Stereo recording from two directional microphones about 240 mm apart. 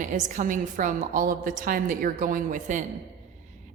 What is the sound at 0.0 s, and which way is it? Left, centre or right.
A woman's voice, right.